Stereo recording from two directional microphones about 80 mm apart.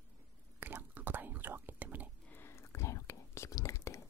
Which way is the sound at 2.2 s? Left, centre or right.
Left.